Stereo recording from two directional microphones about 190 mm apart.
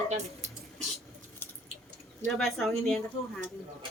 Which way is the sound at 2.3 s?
Centre (ahead or behind).